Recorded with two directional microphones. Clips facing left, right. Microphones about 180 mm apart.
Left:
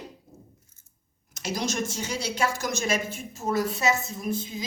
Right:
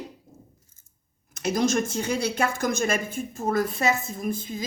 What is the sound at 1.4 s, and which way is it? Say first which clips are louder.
A woman's voice: right 6 dB; 55° right (ahead or behind).